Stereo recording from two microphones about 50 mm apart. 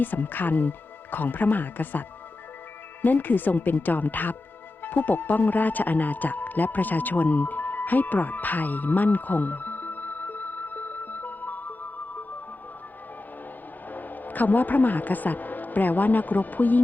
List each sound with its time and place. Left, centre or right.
0.0 s speech: left
4.8 s music: left
13.9 s speech: left